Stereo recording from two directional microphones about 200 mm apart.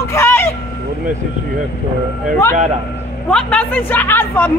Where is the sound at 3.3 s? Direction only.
5° left (ahead or behind).